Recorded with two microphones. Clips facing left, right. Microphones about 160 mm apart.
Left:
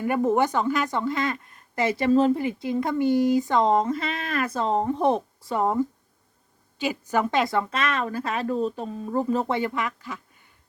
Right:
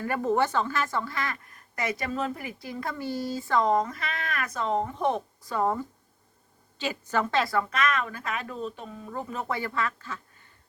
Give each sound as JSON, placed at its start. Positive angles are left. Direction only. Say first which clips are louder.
{"t": 0.0, "sound": "a woman's voice", "louder": "left 4 dB", "side_deg": 15}
{"t": 5.5, "sound": "a woman's voice", "louder": "left 4 dB", "side_deg": 15}